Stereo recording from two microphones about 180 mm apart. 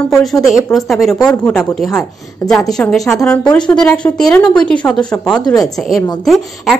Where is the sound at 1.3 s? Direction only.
15° left (ahead or behind).